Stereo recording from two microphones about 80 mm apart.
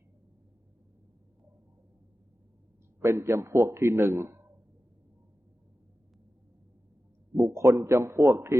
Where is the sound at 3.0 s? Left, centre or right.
Right.